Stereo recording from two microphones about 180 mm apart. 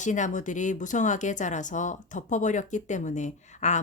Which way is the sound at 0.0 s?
45° left (ahead or behind).